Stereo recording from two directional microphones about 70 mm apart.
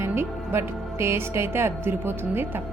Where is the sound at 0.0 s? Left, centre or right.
Right.